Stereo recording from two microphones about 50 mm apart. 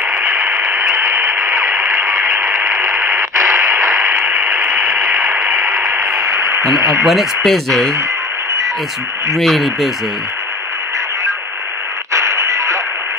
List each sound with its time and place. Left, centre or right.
0.9 s radio: right
4.4 s mechanisms: right
6.2 s radio: right
6.8 s speech: right
7.1 s speech: centre
9.4 s speech: centre
12.1 s music: right